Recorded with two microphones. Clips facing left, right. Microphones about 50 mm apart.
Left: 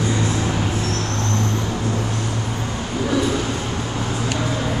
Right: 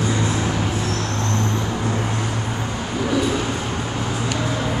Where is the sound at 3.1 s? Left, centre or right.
Centre.